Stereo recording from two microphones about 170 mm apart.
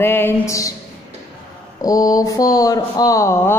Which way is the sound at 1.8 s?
20° left (ahead or behind).